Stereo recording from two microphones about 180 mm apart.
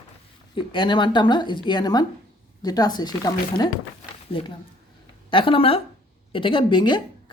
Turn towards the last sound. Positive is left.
turn(degrees=25)  # may be behind; listen again after turning